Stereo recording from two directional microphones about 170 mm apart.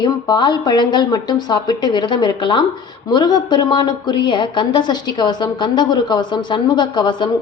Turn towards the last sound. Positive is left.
turn(degrees=25)  # may be behind; listen again after turning